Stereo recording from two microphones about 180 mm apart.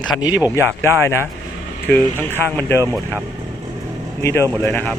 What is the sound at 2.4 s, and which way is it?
Speech, 10° left (ahead or behind).